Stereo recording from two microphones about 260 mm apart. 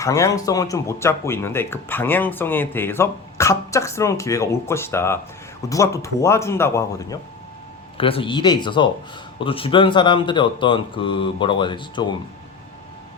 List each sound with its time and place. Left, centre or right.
0.0 s speech: centre